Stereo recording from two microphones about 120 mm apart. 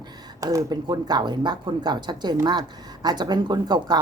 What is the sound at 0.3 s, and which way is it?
A woman's voice, 30° right (ahead or behind).